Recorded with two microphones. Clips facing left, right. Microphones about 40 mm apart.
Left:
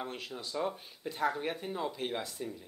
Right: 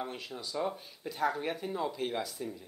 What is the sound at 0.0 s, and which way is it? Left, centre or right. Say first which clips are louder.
Speech: right 1 dB; centre.